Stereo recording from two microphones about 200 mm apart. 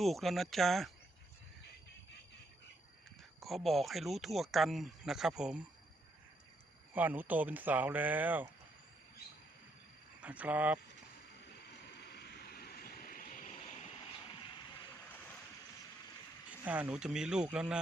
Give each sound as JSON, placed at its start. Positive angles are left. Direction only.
{"t": 0.0, "sound": "speech", "side_deg": 0}
{"t": 3.4, "sound": "speech", "side_deg": 0}
{"t": 6.9, "sound": "speech", "side_deg": -10}
{"t": 10.2, "sound": "speech", "side_deg": -5}
{"t": 11.9, "sound": "vehicle", "side_deg": 55}
{"t": 15.1, "sound": "waves", "side_deg": 10}
{"t": 16.5, "sound": "speech", "side_deg": -5}